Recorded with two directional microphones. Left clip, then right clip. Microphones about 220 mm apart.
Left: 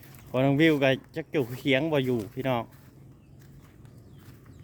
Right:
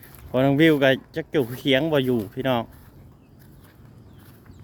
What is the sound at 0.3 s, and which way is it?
Speech, 10° right (ahead or behind).